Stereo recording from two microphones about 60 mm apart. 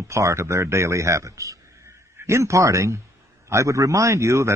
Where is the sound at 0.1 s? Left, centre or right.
Right.